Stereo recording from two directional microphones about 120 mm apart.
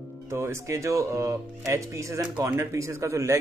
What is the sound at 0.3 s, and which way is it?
Speech, 25° right (ahead or behind).